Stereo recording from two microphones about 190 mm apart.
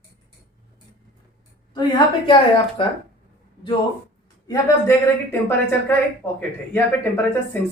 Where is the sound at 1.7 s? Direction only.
25° left (ahead or behind).